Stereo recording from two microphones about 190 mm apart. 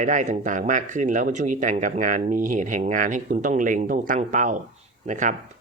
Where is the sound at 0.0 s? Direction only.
40° right (ahead or behind).